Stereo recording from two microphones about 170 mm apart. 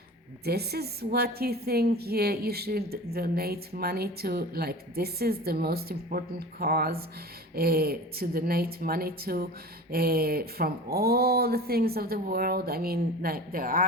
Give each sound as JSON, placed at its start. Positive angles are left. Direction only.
{"t": 0.4, "sound": "a woman's voice", "side_deg": -70}